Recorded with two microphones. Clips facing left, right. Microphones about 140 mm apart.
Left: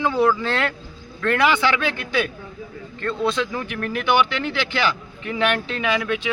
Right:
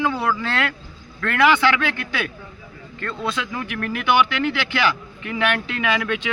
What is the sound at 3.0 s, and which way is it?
Speech, 30° left (ahead or behind).